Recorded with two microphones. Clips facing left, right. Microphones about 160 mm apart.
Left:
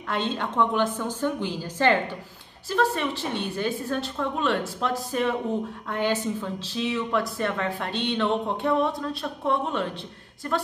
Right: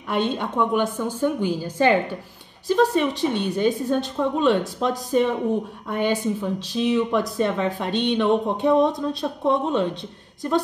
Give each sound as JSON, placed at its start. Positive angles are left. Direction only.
{"t": 0.1, "sound": "speech", "side_deg": -15}